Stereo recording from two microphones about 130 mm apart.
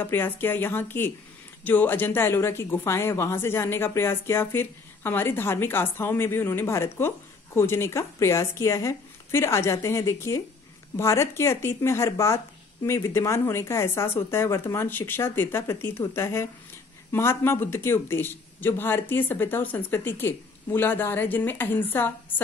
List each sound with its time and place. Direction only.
0.0 s a man's voice: 15° left (ahead or behind)